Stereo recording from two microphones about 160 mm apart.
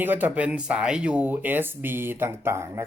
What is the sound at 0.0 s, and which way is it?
Speech, 10° right (ahead or behind).